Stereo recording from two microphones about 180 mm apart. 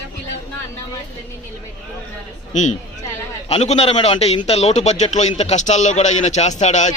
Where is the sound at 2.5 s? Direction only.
40° left (ahead or behind).